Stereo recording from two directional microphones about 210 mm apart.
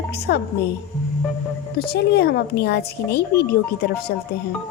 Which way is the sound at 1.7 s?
50° left (ahead or behind).